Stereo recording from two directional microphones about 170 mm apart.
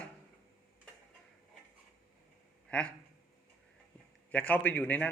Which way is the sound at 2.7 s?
5° left (ahead or behind).